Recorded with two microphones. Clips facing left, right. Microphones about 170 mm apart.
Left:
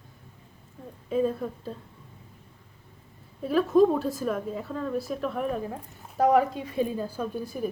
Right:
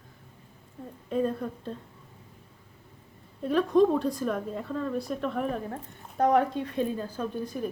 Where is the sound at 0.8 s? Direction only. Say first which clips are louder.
Left 2 dB; 5° right (ahead or behind).